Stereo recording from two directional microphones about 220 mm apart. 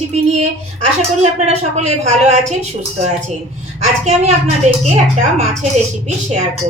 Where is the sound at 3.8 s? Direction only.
30° right (ahead or behind).